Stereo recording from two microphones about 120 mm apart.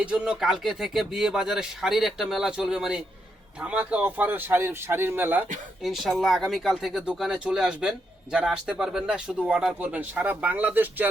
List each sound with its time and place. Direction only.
0.0 s speech: 10° right (ahead or behind)
5.8 s speech: centre (ahead or behind)